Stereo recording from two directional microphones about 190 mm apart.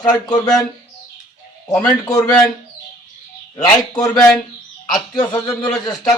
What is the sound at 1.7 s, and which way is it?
Speech, 15° left (ahead or behind).